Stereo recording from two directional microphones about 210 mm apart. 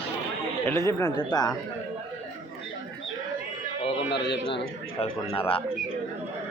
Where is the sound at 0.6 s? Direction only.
15° left (ahead or behind).